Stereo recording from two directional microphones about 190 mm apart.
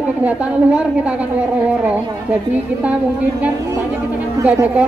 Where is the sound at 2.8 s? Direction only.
5° right (ahead or behind).